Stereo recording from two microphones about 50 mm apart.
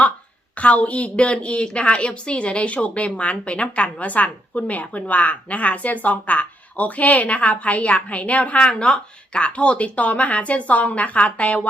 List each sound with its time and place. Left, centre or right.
0.6 s a woman's voice: left